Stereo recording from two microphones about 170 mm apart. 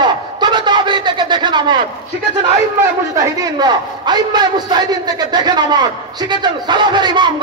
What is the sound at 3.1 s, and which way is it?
A man's voice, 20° right (ahead or behind).